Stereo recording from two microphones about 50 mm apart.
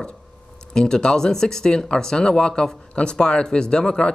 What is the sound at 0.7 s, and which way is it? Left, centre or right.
Speech, centre.